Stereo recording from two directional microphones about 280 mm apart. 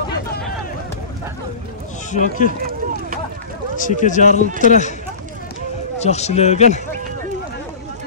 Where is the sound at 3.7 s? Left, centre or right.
Left.